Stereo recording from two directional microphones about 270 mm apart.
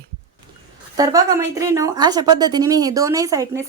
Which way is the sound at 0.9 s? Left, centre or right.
Centre.